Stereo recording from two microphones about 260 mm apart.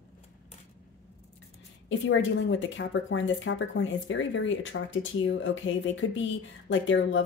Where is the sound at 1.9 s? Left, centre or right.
Left.